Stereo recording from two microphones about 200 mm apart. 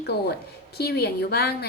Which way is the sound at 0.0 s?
55° left (ahead or behind).